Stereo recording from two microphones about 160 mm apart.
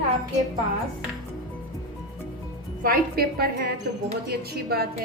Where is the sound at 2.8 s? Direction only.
70° right (ahead or behind).